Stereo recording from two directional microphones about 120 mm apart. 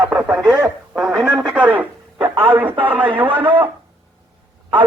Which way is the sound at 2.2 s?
50° right (ahead or behind).